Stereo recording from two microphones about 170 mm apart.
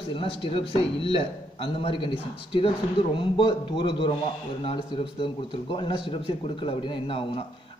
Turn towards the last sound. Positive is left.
turn(degrees=30)  # may be behind; listen again after turning